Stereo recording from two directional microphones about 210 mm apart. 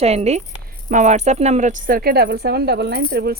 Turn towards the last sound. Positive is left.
turn(degrees=-50)  # may be behind; listen again after turning